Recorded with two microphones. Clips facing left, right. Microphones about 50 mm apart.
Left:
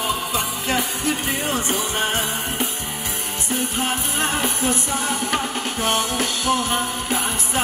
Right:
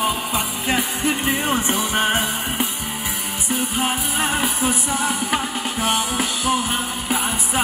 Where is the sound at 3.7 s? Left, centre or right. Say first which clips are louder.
Right 2 dB; centre.